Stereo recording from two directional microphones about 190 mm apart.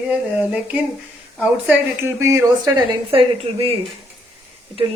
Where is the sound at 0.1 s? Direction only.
5° right (ahead or behind).